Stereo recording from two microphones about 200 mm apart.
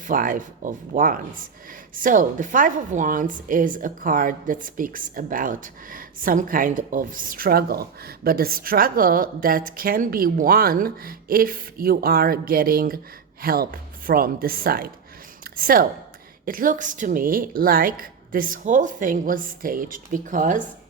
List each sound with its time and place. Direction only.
0.0 s a woman's voice: 40° right (ahead or behind)